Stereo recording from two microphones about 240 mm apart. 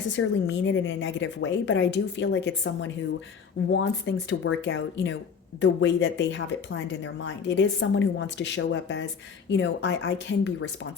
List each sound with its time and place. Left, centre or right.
0.1 s speech: left